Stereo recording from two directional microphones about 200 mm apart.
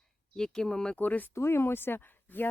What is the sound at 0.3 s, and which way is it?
Speech, 5° left (ahead or behind).